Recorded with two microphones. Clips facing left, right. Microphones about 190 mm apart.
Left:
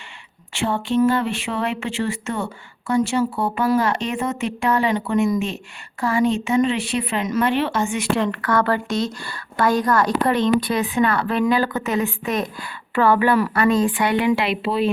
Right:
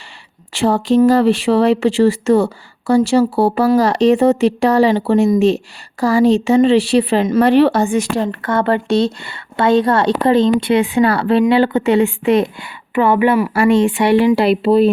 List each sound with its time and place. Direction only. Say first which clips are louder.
0.5 s speech: right 7 dB; 40° right (ahead or behind)
8.4 s speech: right 4 dB; 25° right (ahead or behind)
12.9 s a woman's voice: right 4 dB; 15° right (ahead or behind)
13.5 s speech: right 5 dB; 30° right (ahead or behind)